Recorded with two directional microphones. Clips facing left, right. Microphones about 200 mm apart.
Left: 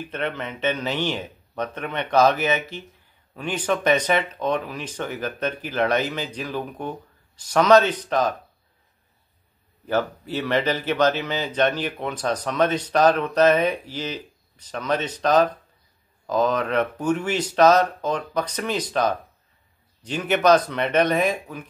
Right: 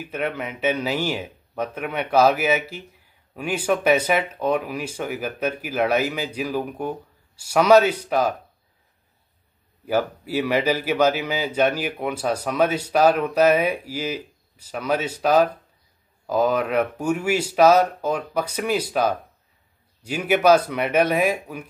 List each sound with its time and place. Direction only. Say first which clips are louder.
0.0 s speech: right 1 dB; 10° right (ahead or behind)
9.8 s speech: right 1 dB; 10° right (ahead or behind)